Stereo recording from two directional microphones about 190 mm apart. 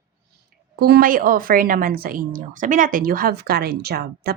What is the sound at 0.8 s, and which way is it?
A woman's voice, 50° right (ahead or behind).